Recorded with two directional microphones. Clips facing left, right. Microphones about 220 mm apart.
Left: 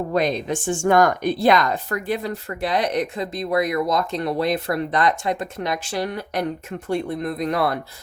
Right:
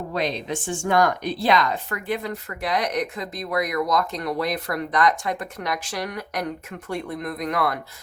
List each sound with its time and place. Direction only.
0.1 s speech: 50° left (ahead or behind); by 7.8 s 30° left (ahead or behind)